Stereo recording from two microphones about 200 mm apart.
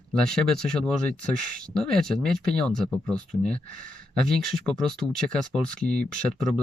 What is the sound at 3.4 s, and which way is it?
Speech, 45° right (ahead or behind).